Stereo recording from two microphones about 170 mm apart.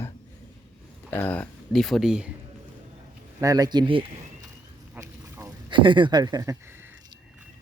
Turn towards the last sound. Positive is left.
turn(degrees=-20)  # may be behind; listen again after turning